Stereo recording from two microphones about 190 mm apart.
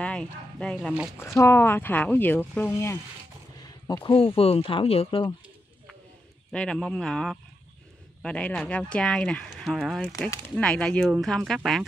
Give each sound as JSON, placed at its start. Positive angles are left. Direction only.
{"t": 0.0, "sound": "speech", "side_deg": 5}
{"t": 6.5, "sound": "speech", "side_deg": 5}